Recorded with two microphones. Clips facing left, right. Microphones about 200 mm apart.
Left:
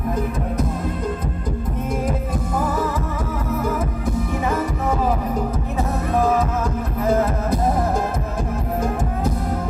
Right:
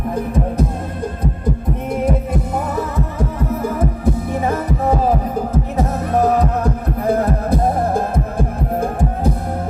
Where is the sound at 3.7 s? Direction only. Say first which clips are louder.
Right 4 dB; 35° right (ahead or behind).